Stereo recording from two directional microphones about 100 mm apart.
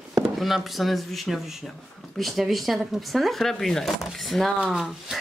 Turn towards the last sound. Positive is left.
turn(degrees=-5)  # may be behind; listen again after turning